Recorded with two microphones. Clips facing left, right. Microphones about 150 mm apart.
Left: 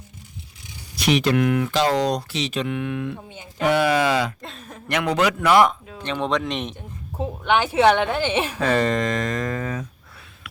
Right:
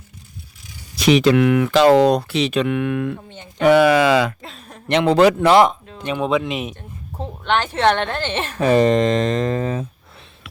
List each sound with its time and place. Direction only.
0.9 s speech: 90° right; by 3.2 s 60° right (ahead or behind)
3.2 s a woman's voice: 10° left (ahead or behind)
3.6 s speech: 90° right
4.4 s speech: centre (ahead or behind)
4.9 s speech: 25° right (ahead or behind)
6.0 s speech: 10° right (ahead or behind)
6.7 s a woman's voice: 10° left (ahead or behind)
8.5 s speech: 15° right (ahead or behind)